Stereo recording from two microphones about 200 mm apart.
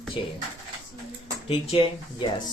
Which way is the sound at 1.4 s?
25° left (ahead or behind).